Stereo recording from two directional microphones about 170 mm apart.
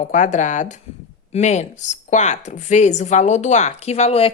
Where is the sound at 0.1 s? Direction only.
45° left (ahead or behind).